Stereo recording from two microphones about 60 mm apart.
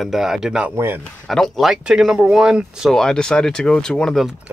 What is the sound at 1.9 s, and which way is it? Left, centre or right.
Speech, centre.